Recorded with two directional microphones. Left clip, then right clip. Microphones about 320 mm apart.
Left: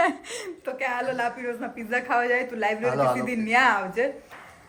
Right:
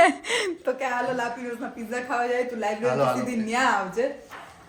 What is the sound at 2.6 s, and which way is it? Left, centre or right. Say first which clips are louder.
A man's voice: even; centre.